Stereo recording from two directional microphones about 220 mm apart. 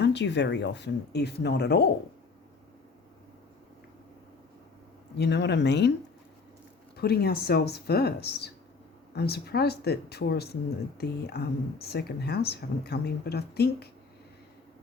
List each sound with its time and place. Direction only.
0.0 s speech: 50° left (ahead or behind)
5.1 s speech: 50° left (ahead or behind)
6.9 s speech: 45° left (ahead or behind)